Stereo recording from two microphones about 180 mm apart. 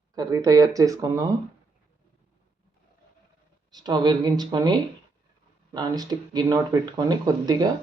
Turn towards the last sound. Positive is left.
turn(degrees=-20)  # may be behind; listen again after turning